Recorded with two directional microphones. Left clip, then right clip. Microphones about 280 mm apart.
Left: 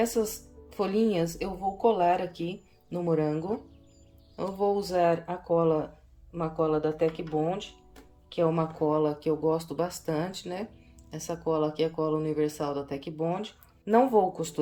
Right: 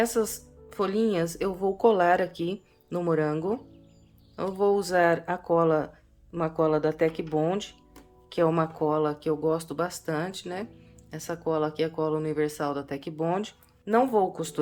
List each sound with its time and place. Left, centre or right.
0.0 s a woman's voice: centre
13.8 s speech: centre